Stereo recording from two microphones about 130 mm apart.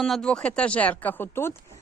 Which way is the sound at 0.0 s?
5° left (ahead or behind).